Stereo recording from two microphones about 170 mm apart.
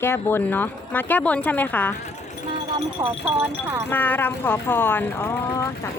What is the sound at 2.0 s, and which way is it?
Speech, 40° left (ahead or behind).